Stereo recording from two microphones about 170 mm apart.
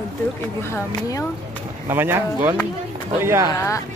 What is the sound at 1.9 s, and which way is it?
Speech, 15° right (ahead or behind).